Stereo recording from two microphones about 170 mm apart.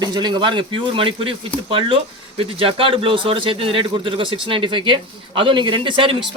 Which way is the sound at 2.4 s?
35° right (ahead or behind).